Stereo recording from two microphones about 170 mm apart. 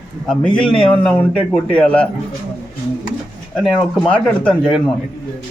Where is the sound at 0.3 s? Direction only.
5° left (ahead or behind).